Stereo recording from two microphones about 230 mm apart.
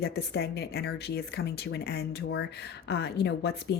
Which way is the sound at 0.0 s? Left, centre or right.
Left.